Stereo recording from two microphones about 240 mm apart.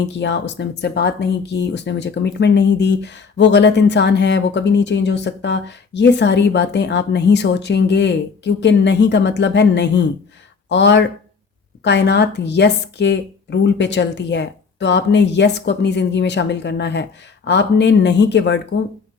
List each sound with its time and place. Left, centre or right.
0.2 s speech: left